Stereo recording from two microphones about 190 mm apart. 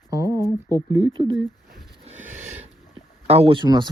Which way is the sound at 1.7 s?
Centre (ahead or behind).